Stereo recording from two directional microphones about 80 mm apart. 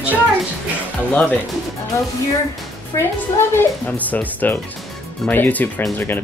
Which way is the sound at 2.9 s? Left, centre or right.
Left.